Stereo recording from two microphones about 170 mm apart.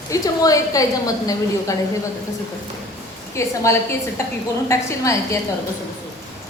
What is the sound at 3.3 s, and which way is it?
A woman's voice, 15° left (ahead or behind).